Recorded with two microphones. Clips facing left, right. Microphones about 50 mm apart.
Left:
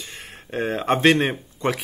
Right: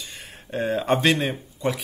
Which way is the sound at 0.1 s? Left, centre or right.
Left.